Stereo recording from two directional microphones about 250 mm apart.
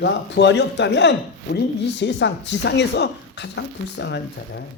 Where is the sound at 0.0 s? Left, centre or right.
Left.